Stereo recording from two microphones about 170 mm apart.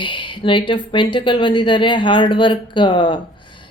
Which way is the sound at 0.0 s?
30° left (ahead or behind).